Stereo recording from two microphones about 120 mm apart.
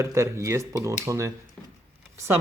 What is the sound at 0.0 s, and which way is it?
Speech, 25° right (ahead or behind).